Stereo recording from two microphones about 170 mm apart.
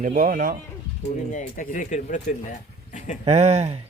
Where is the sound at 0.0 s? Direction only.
55° right (ahead or behind).